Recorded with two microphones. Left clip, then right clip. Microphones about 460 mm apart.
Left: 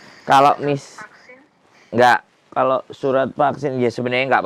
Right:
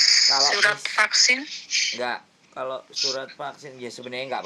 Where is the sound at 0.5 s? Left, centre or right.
Right.